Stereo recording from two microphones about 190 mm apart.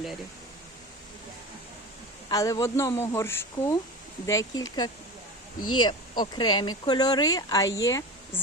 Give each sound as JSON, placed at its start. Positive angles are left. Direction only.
{"t": 2.3, "sound": "speech", "side_deg": 20}